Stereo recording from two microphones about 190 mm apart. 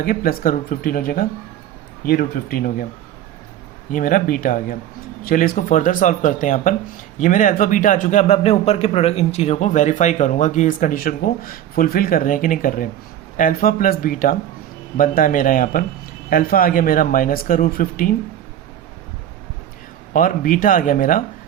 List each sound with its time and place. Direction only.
0.0 s a man's voice: 50° left (ahead or behind)
3.9 s a man's voice: 45° left (ahead or behind)
20.1 s a man's voice: 45° left (ahead or behind)